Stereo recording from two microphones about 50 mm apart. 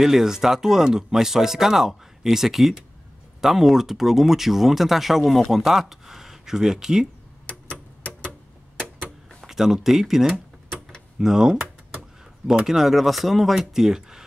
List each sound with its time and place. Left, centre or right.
0.0 s speech: centre
7.4 s clock: left
9.4 s speech: centre
12.6 s speech: centre